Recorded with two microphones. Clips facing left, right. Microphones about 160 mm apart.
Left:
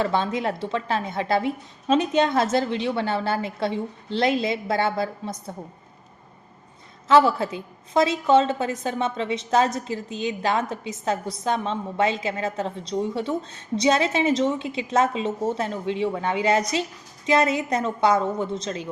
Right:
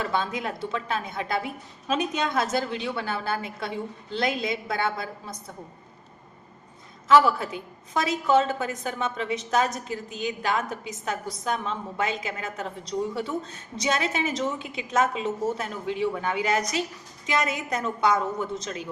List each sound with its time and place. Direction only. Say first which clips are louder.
0.0 s a woman's voice: left 5 dB; 30° left (ahead or behind)
7.1 s a woman's voice: left 2 dB; 25° left (ahead or behind)